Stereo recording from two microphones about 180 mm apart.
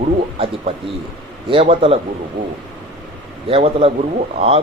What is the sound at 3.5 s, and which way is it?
Speech, 30° right (ahead or behind).